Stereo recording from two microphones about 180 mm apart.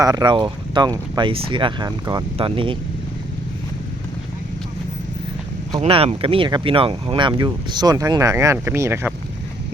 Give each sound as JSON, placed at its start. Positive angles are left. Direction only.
{"t": 0.0, "sound": "speech", "side_deg": -20}
{"t": 5.8, "sound": "speech", "side_deg": -35}